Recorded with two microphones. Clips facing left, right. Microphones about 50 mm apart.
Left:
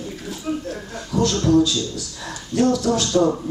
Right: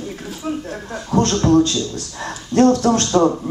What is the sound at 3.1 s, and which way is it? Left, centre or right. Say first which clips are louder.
Speech: right 2 dB; right.